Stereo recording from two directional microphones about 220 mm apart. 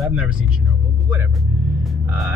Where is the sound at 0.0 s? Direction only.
5° right (ahead or behind).